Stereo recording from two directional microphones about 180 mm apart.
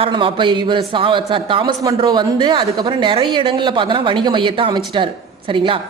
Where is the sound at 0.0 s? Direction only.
30° right (ahead or behind).